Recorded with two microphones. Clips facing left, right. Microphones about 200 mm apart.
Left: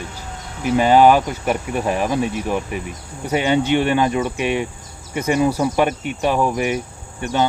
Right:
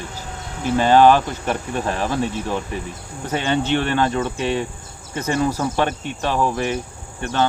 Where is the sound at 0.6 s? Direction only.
15° left (ahead or behind).